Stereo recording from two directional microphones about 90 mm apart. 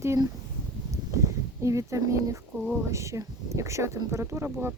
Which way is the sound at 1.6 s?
35° right (ahead or behind).